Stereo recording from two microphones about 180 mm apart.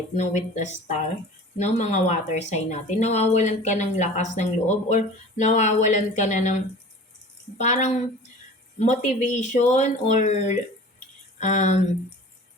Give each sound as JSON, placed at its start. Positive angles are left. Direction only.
{"t": 0.2, "sound": "speech", "side_deg": 40}
{"t": 7.6, "sound": "speech", "side_deg": 40}